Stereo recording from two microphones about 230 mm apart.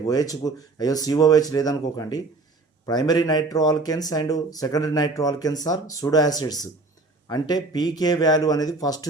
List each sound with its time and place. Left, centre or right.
0.0 s speech: centre